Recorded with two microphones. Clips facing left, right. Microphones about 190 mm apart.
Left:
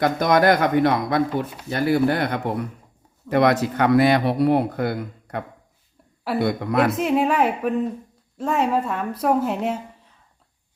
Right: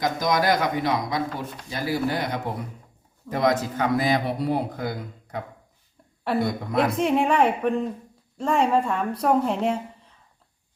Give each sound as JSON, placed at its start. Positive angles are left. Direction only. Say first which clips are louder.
{"t": 0.0, "sound": "speech", "louder": "left 5 dB", "side_deg": 60}
{"t": 3.2, "sound": "a man's voice", "louder": "left 5 dB", "side_deg": 70}
{"t": 6.4, "sound": "a man's voice", "louder": "left 5 dB", "side_deg": 70}
{"t": 6.9, "sound": "speech", "louder": "left 1 dB", "side_deg": 5}